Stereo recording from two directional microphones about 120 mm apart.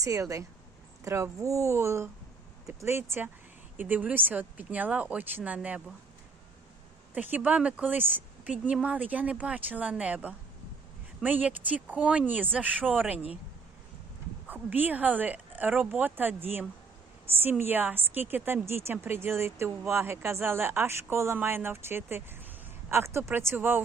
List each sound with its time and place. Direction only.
0.0 s speech: 25° right (ahead or behind)
7.1 s speech: 15° right (ahead or behind)
14.4 s speech: 15° right (ahead or behind)